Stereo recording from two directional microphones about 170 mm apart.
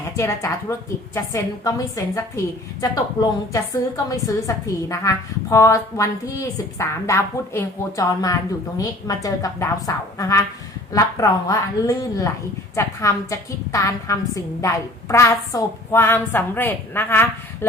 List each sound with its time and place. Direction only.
0.2 s a woman's voice: 15° left (ahead or behind)
2.8 s a woman's voice: 20° left (ahead or behind)